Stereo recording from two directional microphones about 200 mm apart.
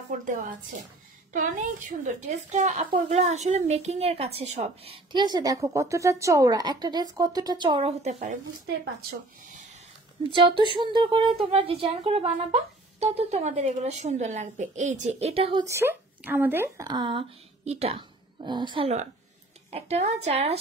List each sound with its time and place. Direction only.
0.2 s a woman's voice: 40° right (ahead or behind); by 7.9 s 20° right (ahead or behind)
8.0 s speech: 35° right (ahead or behind)
10.3 s a woman's voice: 25° right (ahead or behind)
15.6 s a woman's voice: 15° right (ahead or behind); by 20.5 s 30° right (ahead or behind)